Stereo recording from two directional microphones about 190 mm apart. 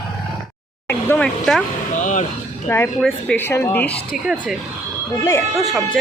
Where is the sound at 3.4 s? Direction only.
15° left (ahead or behind).